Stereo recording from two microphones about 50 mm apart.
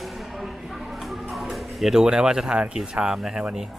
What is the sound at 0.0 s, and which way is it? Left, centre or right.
Music, centre.